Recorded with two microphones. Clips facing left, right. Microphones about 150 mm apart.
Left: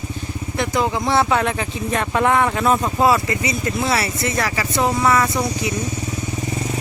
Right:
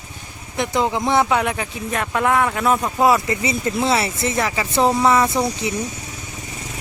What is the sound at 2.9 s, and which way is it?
Speech, 15° right (ahead or behind).